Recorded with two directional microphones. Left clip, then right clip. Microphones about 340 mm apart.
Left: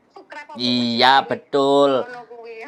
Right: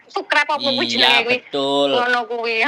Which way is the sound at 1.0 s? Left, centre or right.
Centre.